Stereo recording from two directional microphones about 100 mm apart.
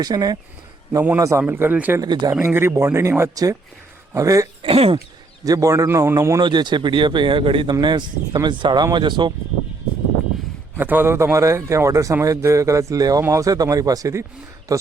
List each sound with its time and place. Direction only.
0.0 s speech: 40° right (ahead or behind)
1.2 s a man's voice: 25° right (ahead or behind)
2.0 s speech: 40° right (ahead or behind)
2.4 s a man's voice: 25° right (ahead or behind)
4.6 s speech: 70° right (ahead or behind)
5.5 s speech: 35° right (ahead or behind)
6.4 s speech: 50° right (ahead or behind)
7.7 s speech: 50° right (ahead or behind)
10.8 s a man's voice: 20° right (ahead or behind)